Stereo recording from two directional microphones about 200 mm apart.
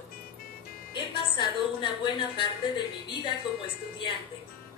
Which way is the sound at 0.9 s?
25° left (ahead or behind).